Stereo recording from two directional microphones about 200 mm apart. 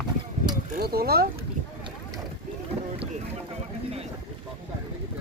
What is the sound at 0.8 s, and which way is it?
Speech, 50° right (ahead or behind).